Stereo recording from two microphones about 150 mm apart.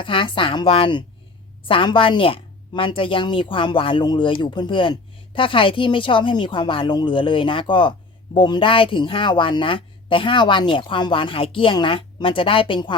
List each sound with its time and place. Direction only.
0.0 s a woman's voice: 35° left (ahead or behind)